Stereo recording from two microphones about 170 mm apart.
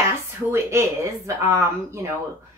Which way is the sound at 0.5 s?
15° right (ahead or behind).